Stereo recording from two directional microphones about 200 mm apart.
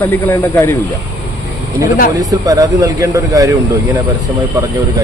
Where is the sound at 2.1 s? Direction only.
15° right (ahead or behind).